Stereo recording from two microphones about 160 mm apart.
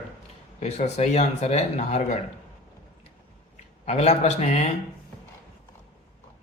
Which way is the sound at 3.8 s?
45° left (ahead or behind).